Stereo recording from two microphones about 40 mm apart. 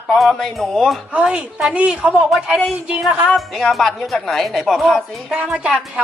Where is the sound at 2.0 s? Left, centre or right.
Right.